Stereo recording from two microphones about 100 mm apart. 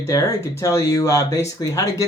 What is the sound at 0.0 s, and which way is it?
Speech, 35° left (ahead or behind).